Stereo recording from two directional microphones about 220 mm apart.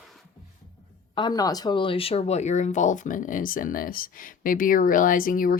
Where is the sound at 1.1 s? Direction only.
20° left (ahead or behind).